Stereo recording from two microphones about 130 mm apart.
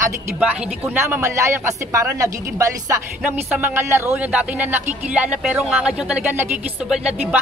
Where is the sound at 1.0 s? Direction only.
20° right (ahead or behind).